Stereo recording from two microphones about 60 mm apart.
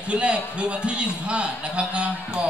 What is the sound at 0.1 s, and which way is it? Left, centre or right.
A man's voice, centre.